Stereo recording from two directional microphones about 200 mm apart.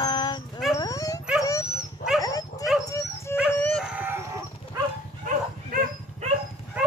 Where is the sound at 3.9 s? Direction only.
10° right (ahead or behind).